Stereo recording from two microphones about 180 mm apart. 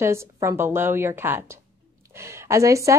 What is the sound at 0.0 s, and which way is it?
A woman's voice, 15° right (ahead or behind).